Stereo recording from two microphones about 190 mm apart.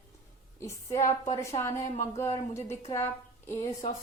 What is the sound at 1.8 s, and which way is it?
Speech, 40° left (ahead or behind).